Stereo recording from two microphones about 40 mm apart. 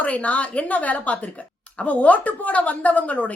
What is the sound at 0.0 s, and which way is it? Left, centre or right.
A woman's voice, left.